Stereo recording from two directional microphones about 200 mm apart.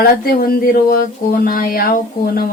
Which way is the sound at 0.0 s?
50° left (ahead or behind).